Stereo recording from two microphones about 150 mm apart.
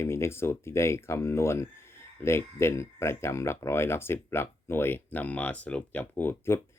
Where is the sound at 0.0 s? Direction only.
15° left (ahead or behind).